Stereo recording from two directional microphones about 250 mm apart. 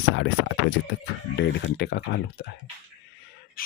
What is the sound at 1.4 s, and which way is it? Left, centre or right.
Speech, left.